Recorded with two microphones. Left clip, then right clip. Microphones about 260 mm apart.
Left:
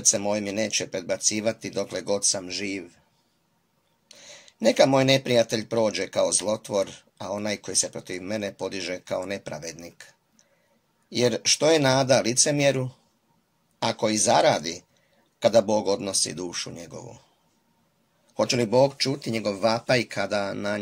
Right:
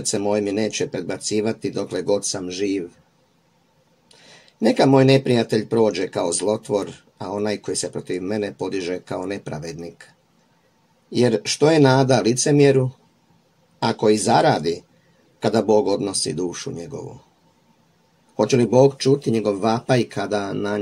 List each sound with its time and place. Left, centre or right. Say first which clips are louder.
0.0 s speech: right 3 dB; left
4.6 s speech: right 3 dB; left
11.1 s speech: right 3 dB; left
13.7 s speech: right 6 dB; left
15.3 s a sound: left 1 dB; left
16.0 s speech: right 4 dB; left
18.6 s speech: right 5 dB; left